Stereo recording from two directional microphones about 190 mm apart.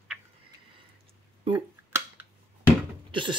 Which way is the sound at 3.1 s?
25° right (ahead or behind).